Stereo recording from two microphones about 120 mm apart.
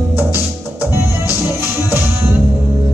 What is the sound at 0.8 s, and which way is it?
Music, 20° right (ahead or behind).